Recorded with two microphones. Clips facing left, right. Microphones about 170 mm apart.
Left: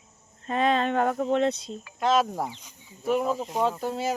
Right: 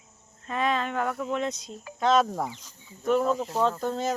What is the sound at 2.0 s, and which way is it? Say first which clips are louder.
Speech: right 1 dB; 5° left (ahead or behind).